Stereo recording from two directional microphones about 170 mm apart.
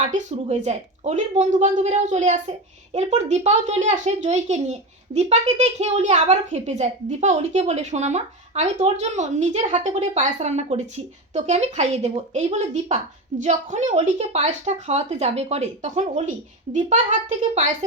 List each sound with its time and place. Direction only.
0.1 s a woman's voice: 45° right (ahead or behind)